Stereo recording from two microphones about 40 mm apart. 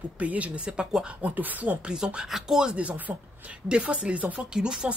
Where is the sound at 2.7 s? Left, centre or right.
Right.